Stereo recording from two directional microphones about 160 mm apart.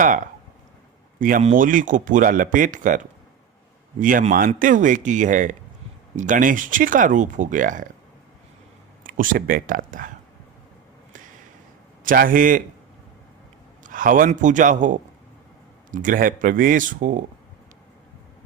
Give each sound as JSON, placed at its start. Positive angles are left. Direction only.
{"t": 1.2, "sound": "speech", "side_deg": -50}
{"t": 9.0, "sound": "speech", "side_deg": -60}
{"t": 12.0, "sound": "speech", "side_deg": -60}
{"t": 13.8, "sound": "speech", "side_deg": -55}